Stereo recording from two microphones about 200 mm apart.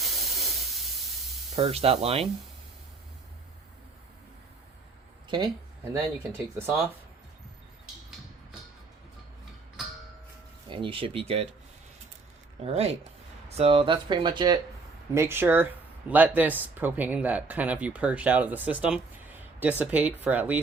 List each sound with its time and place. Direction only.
0.0 s steam: centre (ahead or behind)
1.5 s speech: 30° right (ahead or behind)
5.9 s speech: 10° right (ahead or behind)
10.7 s speech: 25° right (ahead or behind)
12.6 s speech: 30° right (ahead or behind); by 20.6 s 10° right (ahead or behind)